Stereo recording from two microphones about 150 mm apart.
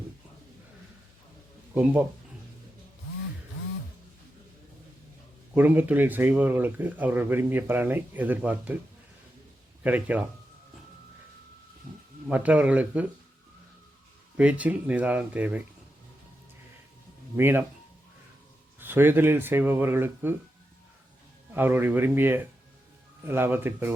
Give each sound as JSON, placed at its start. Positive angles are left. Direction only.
{"t": 1.7, "sound": "speech", "side_deg": -10}
{"t": 5.5, "sound": "speech", "side_deg": -10}
{"t": 9.8, "sound": "speech", "side_deg": -10}
{"t": 12.3, "sound": "speech", "side_deg": -10}
{"t": 14.3, "sound": "speech", "side_deg": -10}
{"t": 17.3, "sound": "speech", "side_deg": -15}
{"t": 18.8, "sound": "speech", "side_deg": -15}
{"t": 21.5, "sound": "speech", "side_deg": -15}